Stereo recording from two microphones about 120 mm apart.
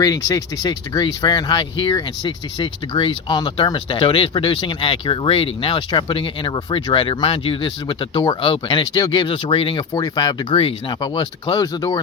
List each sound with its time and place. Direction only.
0.0 s speech: 30° left (ahead or behind); by 9.8 s 45° left (ahead or behind)
9.9 s speech: 35° left (ahead or behind)